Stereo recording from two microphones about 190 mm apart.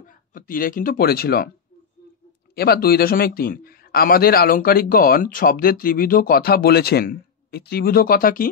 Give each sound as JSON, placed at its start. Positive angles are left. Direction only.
{"t": 0.0, "sound": "speech", "side_deg": 45}
{"t": 2.5, "sound": "a man's voice", "side_deg": 55}